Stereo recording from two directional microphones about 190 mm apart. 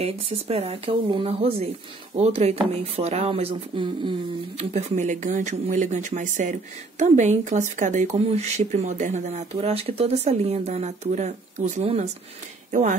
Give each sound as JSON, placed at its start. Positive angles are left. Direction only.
{"t": 0.0, "sound": "speech", "side_deg": -30}